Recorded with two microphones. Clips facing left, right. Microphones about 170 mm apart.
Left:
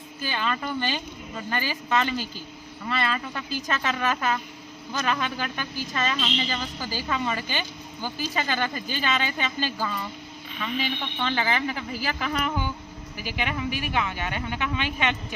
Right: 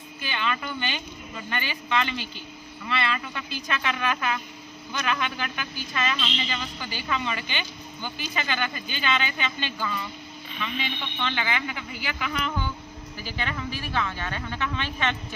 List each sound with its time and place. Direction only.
0.2 s a woman's voice: 40° left (ahead or behind)
11.2 s a woman's voice: 35° left (ahead or behind)
12.5 s vehicle: 15° left (ahead or behind)
13.1 s speech: 15° left (ahead or behind)